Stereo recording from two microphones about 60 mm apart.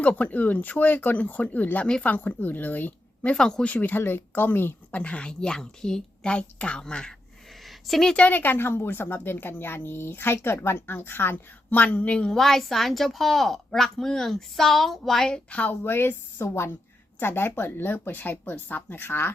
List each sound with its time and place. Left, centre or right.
0.0 s speech: left
3.3 s a woman's voice: centre
3.7 s speech: left
4.9 s a woman's voice: left
7.9 s a woman's voice: centre
8.1 s speech: left
11.8 s speech: left
12.3 s a woman's voice: centre
15.4 s speech: left
15.7 s speech: left